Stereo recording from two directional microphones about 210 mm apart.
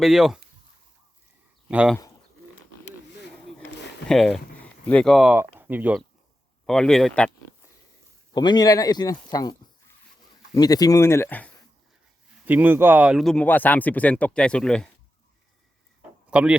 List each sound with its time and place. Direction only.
0.0 s speech: centre (ahead or behind)
1.6 s speech: 5° right (ahead or behind)
4.1 s speech: centre (ahead or behind)
8.3 s speech: 20° left (ahead or behind)
12.5 s speech: 10° right (ahead or behind)
16.3 s speech: 5° right (ahead or behind)